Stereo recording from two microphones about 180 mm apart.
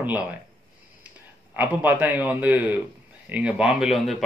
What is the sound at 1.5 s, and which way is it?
Speech, 10° right (ahead or behind).